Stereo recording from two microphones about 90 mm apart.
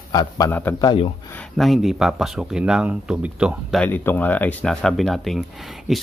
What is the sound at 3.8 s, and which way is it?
Speech, 20° left (ahead or behind).